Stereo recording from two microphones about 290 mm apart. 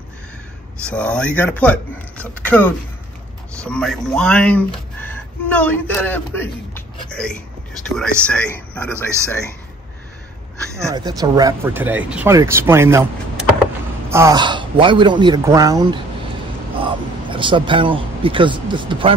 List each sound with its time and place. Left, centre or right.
0.8 s a man's voice: centre
8.9 s speech: centre
10.9 s speech: centre